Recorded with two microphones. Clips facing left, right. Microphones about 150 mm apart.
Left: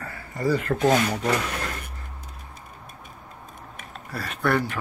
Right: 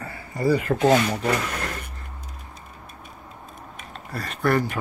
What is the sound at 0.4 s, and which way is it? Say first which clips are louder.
Speech: right 2 dB; 10° right (ahead or behind).